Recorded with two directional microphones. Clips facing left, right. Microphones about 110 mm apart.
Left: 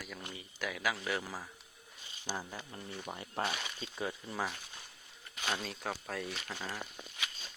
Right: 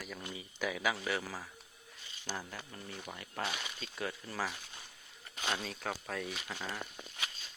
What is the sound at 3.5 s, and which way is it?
Speech, 5° left (ahead or behind).